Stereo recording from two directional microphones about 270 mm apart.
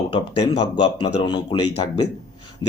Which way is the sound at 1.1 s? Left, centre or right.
Centre.